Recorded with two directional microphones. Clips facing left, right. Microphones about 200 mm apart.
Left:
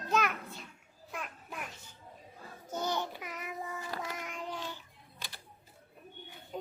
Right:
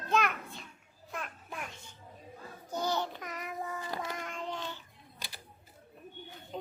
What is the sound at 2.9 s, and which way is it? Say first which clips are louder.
Child singing: right 2 dB; 10° left (ahead or behind).